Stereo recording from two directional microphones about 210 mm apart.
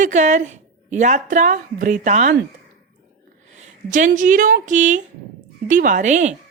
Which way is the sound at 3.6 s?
35° right (ahead or behind).